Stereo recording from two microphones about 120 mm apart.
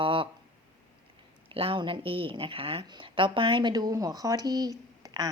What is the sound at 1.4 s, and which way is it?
A woman's voice, 50° right (ahead or behind).